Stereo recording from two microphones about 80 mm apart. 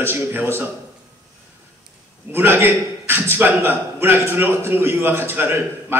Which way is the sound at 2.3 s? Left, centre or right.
Right.